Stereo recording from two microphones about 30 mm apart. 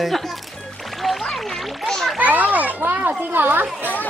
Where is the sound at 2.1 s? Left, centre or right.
Right.